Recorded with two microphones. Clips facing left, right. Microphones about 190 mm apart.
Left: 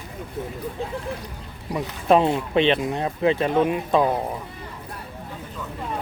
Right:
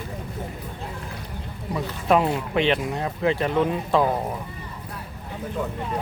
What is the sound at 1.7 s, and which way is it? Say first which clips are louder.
Speech: left 2 dB; 25° left (ahead or behind).